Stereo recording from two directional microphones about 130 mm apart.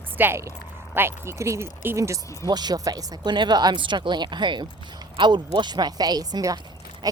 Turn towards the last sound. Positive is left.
turn(degrees=-30)  # may be behind; listen again after turning